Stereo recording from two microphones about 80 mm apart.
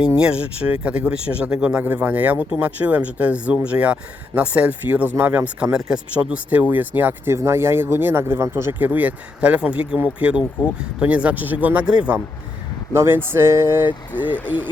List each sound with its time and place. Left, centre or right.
0.2 s speech: centre
7.3 s speech: right
8.8 s speech: right
12.9 s speech: right